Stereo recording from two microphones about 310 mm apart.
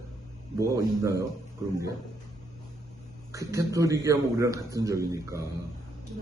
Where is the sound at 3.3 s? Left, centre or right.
Centre.